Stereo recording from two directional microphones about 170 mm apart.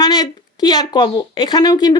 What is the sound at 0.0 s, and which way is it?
Speech, 25° left (ahead or behind).